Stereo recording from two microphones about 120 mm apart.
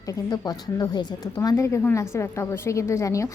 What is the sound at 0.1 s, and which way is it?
Speech, 30° left (ahead or behind).